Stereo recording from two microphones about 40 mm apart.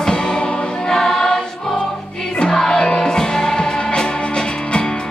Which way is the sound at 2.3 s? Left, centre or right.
Centre.